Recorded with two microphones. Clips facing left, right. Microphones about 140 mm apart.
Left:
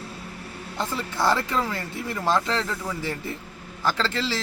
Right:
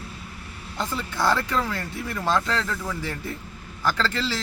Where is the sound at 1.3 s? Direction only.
25° left (ahead or behind).